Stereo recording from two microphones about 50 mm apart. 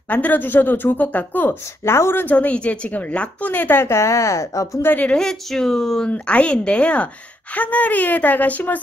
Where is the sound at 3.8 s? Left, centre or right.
Left.